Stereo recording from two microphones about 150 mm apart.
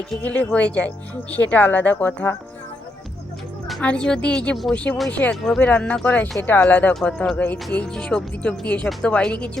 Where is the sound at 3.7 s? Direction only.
5° left (ahead or behind).